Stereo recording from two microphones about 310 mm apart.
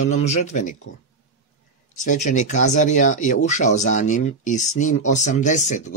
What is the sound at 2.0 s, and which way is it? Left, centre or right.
Speech, left.